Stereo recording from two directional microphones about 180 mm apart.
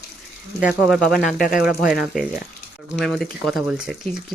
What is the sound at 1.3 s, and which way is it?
Speech, 50° left (ahead or behind).